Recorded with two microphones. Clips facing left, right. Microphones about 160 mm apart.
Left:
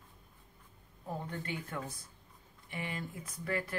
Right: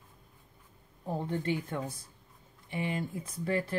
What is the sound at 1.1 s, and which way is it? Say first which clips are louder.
Speech: right 8 dB; 30° right (ahead or behind).